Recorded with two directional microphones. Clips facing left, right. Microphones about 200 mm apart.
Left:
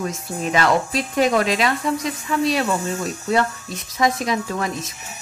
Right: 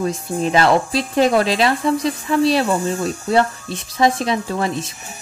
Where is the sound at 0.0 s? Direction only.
30° right (ahead or behind).